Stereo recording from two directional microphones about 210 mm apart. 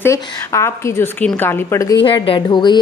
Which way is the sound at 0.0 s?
15° left (ahead or behind).